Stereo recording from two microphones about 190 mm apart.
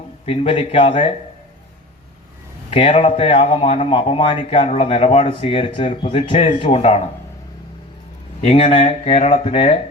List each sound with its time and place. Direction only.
0.3 s speech: 30° left (ahead or behind)
2.6 s speech: 30° left (ahead or behind)
8.4 s speech: 30° left (ahead or behind)